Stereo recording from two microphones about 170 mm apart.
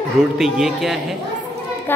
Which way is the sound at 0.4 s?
Centre (ahead or behind).